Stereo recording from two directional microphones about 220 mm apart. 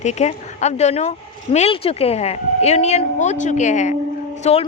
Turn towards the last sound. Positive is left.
turn(degrees=30)  # may be behind; listen again after turning